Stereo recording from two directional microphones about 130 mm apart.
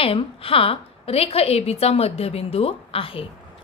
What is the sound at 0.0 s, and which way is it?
A woman's voice, 45° left (ahead or behind).